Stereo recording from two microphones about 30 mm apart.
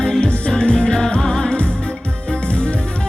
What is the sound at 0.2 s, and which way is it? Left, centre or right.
Music, left.